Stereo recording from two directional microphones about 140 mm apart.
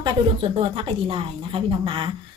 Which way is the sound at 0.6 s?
40° right (ahead or behind).